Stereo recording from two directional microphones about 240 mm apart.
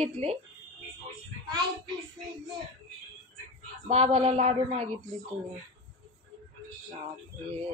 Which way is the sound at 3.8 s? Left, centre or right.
Right.